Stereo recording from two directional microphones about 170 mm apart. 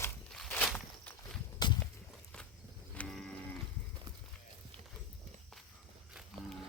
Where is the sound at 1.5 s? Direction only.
25° left (ahead or behind).